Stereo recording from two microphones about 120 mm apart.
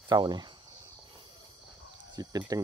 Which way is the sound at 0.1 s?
35° right (ahead or behind).